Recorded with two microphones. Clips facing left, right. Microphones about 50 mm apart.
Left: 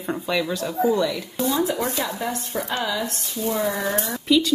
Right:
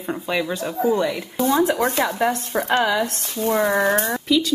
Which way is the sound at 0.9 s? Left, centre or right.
Right.